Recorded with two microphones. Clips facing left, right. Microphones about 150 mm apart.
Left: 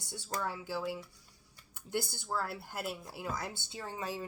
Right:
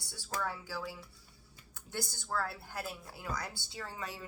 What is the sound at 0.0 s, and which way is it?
A woman's voice, 20° left (ahead or behind).